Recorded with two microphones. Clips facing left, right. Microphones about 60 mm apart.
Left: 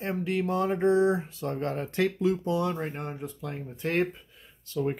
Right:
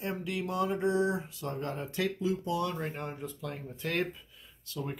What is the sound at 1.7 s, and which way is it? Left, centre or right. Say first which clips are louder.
Speech: left 6 dB; left.